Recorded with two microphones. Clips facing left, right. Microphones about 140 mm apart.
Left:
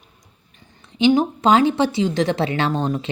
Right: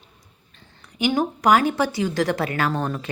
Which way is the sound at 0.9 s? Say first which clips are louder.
Left 6 dB; 20° left (ahead or behind).